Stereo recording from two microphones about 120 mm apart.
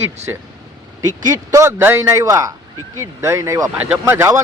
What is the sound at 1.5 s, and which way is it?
Speech, 25° right (ahead or behind).